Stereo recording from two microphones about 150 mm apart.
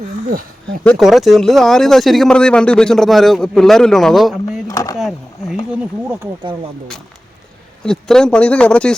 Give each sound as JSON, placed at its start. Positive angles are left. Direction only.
{"t": 0.9, "sound": "speech", "side_deg": 0}
{"t": 4.7, "sound": "speech", "side_deg": 20}
{"t": 4.9, "sound": "a sound", "side_deg": 0}
{"t": 7.9, "sound": "speech", "side_deg": 5}